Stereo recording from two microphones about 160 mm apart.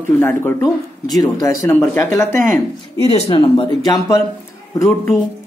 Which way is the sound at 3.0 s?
35° left (ahead or behind).